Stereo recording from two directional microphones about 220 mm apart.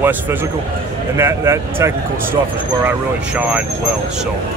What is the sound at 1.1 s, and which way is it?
Speech, 10° right (ahead or behind).